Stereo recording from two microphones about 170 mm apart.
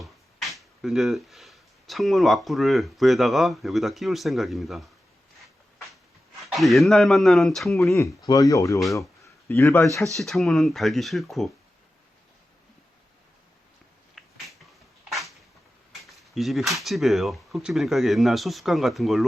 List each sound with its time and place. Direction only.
0.0 s speech: centre (ahead or behind)
6.4 s speech: centre (ahead or behind)
7.9 s speech: 15° left (ahead or behind)
10.2 s speech: centre (ahead or behind)
14.2 s a sound: centre (ahead or behind)
15.1 s cupboard open or close: centre (ahead or behind)
16.0 s speech: centre (ahead or behind)